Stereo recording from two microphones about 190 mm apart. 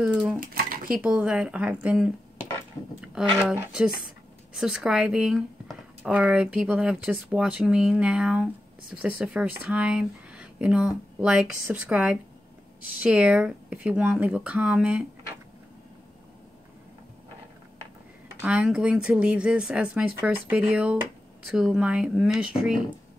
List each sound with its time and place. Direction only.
0.0 s dishes: 5° right (ahead or behind)
0.4 s dishes: 50° right (ahead or behind)
0.9 s speech: 5° right (ahead or behind)
18.4 s speech: 5° right (ahead or behind)